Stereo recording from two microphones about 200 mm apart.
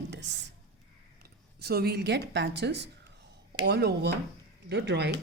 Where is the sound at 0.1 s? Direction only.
60° right (ahead or behind).